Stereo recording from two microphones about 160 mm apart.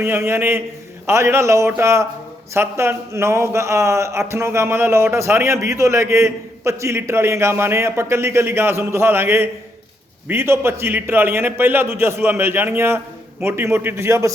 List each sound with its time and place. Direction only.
0.0 s a man's voice: 15° right (ahead or behind)